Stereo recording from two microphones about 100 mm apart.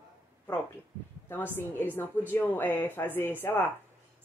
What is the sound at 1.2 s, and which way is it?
Speech, 20° left (ahead or behind).